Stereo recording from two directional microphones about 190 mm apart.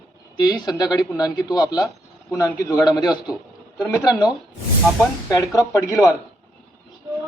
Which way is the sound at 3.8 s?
10° left (ahead or behind).